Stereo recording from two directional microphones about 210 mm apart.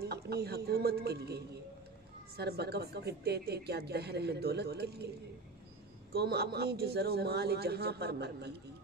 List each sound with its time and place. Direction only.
0.0 s a man's voice: 50° right (ahead or behind)
6.1 s a woman's voice: 50° right (ahead or behind)